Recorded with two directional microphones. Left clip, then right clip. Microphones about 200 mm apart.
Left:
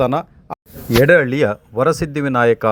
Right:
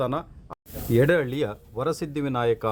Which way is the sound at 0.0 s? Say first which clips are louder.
Left 10 dB; 35° left (ahead or behind).